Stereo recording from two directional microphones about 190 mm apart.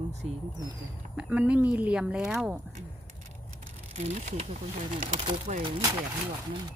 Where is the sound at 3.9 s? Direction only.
35° right (ahead or behind).